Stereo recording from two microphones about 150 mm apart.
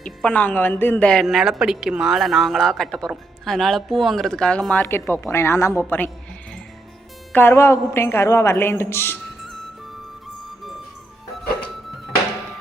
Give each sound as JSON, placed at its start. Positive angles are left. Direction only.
{"t": 0.0, "sound": "a woman's voice", "side_deg": 5}
{"t": 7.3, "sound": "speech", "side_deg": 15}